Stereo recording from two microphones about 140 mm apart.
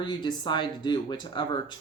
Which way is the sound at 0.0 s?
30° left (ahead or behind).